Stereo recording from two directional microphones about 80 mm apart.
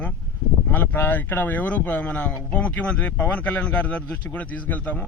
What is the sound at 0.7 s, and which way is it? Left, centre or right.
Speech, left.